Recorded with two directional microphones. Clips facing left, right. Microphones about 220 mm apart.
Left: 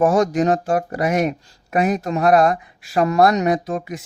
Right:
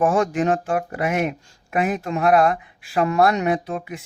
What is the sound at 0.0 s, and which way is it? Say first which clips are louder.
Speech: left 3 dB; 40° left (ahead or behind).